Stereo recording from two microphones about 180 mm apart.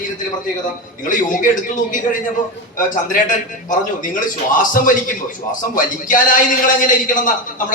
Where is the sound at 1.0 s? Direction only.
45° left (ahead or behind).